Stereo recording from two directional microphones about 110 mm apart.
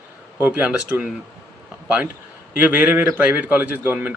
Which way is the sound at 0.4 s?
10° right (ahead or behind).